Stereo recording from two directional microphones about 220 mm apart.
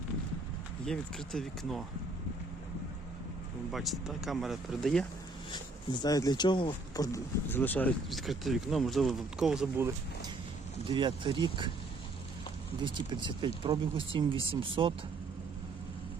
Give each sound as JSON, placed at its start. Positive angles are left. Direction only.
{"t": 0.9, "sound": "speech", "side_deg": 0}
{"t": 3.7, "sound": "speech", "side_deg": 0}
{"t": 5.5, "sound": "speech", "side_deg": 20}
{"t": 10.8, "sound": "speech", "side_deg": -20}
{"t": 12.8, "sound": "speech", "side_deg": -20}